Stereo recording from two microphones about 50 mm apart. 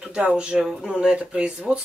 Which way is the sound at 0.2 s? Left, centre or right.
Right.